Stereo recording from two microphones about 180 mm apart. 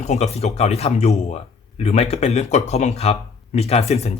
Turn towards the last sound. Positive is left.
turn(degrees=35)  # may be behind; listen again after turning